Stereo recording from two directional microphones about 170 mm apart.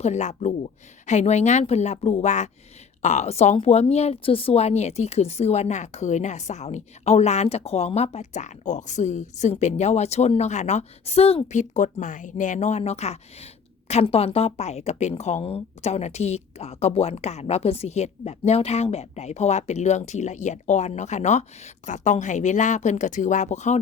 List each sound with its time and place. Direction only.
0.0 s a woman's voice: 45° left (ahead or behind)